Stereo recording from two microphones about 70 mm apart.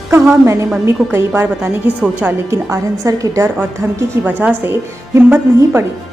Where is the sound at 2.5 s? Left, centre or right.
Right.